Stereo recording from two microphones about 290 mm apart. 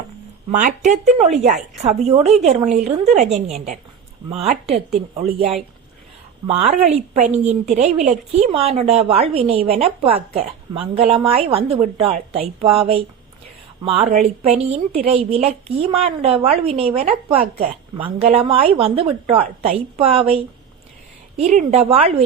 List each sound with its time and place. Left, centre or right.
0.5 s a woman's voice: right
6.5 s a woman's voice: right